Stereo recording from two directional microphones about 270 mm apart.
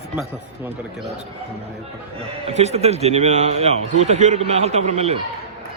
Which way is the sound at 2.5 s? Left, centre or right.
Right.